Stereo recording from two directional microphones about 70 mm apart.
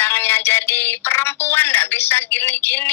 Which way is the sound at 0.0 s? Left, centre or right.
Left.